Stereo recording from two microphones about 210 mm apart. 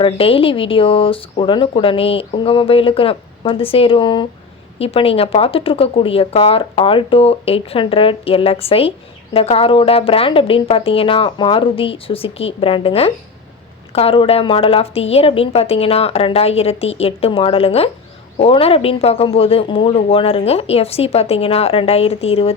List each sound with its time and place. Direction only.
0.0 s speech: 25° left (ahead or behind)